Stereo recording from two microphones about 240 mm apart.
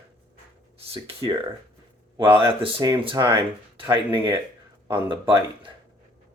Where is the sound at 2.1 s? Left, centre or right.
Centre.